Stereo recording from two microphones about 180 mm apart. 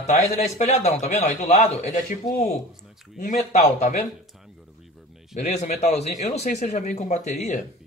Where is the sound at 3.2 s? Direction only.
40° left (ahead or behind).